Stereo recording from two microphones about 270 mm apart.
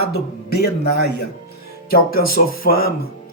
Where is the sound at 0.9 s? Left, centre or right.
Left.